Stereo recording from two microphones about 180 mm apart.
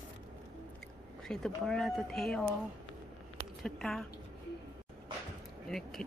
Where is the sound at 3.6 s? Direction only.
5° left (ahead or behind).